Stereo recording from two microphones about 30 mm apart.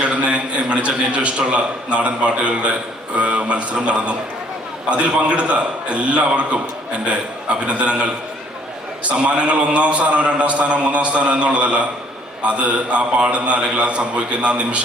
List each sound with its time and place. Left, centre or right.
0.0 s a man's voice: right
7.7 s a man's voice: right
9.0 s a man's voice: right